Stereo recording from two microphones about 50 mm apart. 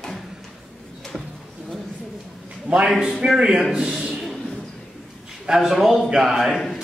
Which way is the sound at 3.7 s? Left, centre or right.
Centre.